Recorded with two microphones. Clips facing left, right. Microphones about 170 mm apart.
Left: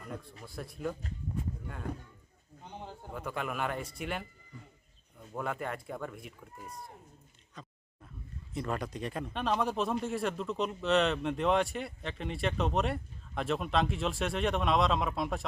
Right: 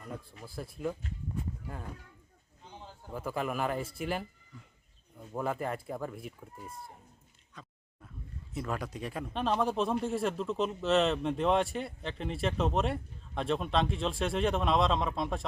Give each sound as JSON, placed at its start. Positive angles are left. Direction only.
{"t": 0.4, "sound": "speech", "side_deg": 0}
{"t": 2.6, "sound": "a sound", "side_deg": 60}
{"t": 3.2, "sound": "speech", "side_deg": 0}
{"t": 5.3, "sound": "speech", "side_deg": -5}
{"t": 8.5, "sound": "speech", "side_deg": -5}